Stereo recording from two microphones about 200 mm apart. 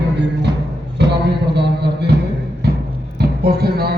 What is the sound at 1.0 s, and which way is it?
Music, 60° right (ahead or behind).